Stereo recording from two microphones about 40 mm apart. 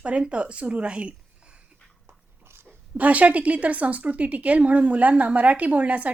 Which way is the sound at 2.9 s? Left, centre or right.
Right.